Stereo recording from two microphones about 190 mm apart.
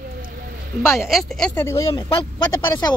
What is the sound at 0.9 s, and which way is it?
A woman's voice, centre (ahead or behind).